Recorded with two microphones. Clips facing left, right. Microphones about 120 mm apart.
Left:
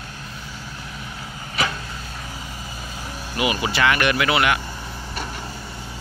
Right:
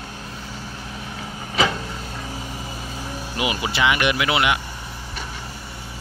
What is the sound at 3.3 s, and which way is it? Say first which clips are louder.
Speech: left 2 dB; 20° right (ahead or behind).